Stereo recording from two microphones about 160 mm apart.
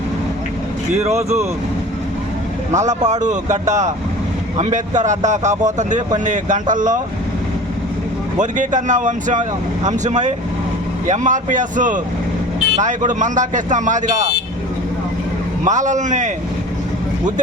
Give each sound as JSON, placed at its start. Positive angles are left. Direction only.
{"t": 2.7, "sound": "speech", "side_deg": -45}
{"t": 8.4, "sound": "speech", "side_deg": -50}
{"t": 15.6, "sound": "speech", "side_deg": -50}